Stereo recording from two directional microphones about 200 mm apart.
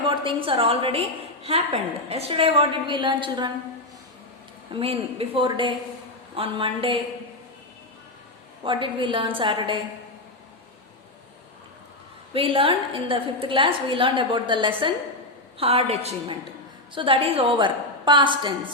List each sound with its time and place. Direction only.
0.0 s a woman's voice: 25° right (ahead or behind)
4.7 s a woman's voice: 30° right (ahead or behind)
8.6 s a woman's voice: 25° right (ahead or behind)
12.3 s a woman's voice: 25° right (ahead or behind)